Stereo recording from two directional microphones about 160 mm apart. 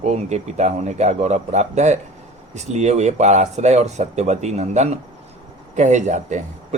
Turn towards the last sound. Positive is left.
turn(degrees=-50)  # may be behind; listen again after turning